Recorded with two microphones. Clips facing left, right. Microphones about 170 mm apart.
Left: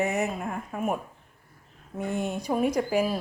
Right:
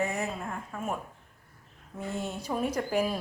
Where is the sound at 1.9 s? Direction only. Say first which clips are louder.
Left 5 dB; 15° left (ahead or behind).